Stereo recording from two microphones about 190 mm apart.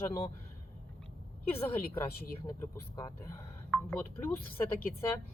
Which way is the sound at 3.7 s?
10° left (ahead or behind).